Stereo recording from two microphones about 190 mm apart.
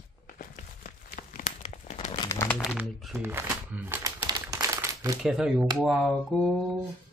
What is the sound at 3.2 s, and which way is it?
Crumpling, 10° right (ahead or behind).